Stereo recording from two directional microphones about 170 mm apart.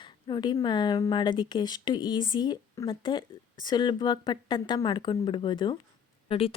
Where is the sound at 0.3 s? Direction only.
25° left (ahead or behind).